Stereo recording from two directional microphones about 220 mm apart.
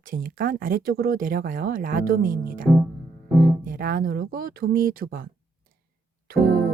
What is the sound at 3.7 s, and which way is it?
Speech, 40° right (ahead or behind).